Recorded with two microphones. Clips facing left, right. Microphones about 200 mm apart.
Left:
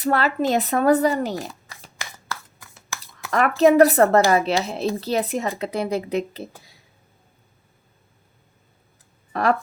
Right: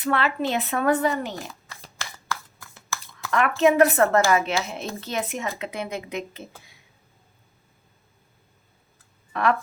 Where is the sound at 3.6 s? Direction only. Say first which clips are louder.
Left 4 dB; 40° left (ahead or behind).